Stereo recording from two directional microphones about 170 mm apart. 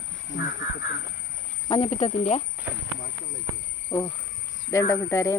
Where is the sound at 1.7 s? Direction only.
35° left (ahead or behind).